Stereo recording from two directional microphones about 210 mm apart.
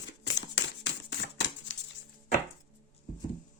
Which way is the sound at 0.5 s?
55° left (ahead or behind).